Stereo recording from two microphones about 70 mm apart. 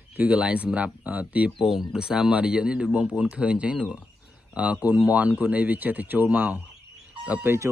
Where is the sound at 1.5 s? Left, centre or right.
Centre; by 6.6 s right.